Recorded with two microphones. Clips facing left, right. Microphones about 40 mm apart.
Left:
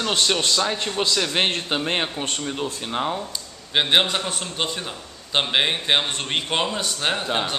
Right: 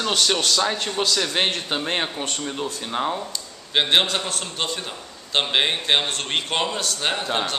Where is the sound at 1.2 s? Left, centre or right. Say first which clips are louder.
Left 1 dB; centre.